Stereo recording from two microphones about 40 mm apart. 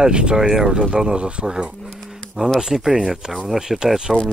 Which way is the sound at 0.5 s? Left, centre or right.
Centre.